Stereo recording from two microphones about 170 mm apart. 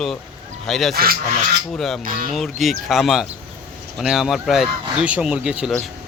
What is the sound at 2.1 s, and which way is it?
Speech, 55° right (ahead or behind).